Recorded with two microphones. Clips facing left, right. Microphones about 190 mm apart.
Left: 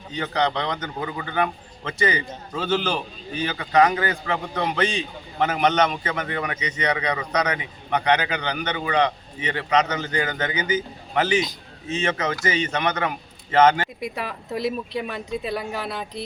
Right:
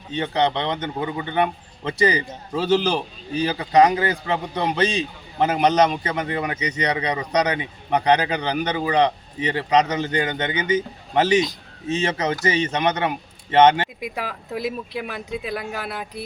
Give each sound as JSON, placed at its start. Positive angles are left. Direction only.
{"t": 0.1, "sound": "a man's voice", "side_deg": -25}
{"t": 14.0, "sound": "speech", "side_deg": -10}